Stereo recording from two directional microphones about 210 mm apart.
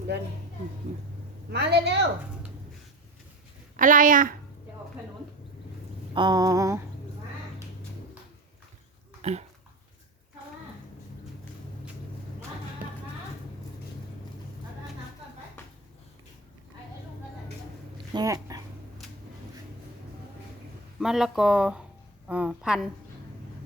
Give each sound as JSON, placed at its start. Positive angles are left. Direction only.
{"t": 0.9, "sound": "speech", "side_deg": -35}
{"t": 1.5, "sound": "a woman's voice", "side_deg": -50}
{"t": 3.8, "sound": "speech", "side_deg": -40}
{"t": 6.1, "sound": "a sound", "side_deg": -20}
{"t": 9.2, "sound": "speech", "side_deg": -30}
{"t": 17.9, "sound": "a sound", "side_deg": -20}
{"t": 21.0, "sound": "speech", "side_deg": 0}